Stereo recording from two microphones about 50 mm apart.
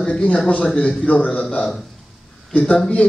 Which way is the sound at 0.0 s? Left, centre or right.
Centre.